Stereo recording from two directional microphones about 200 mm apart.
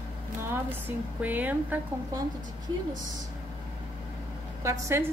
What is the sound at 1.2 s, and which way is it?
A woman's voice, 10° right (ahead or behind).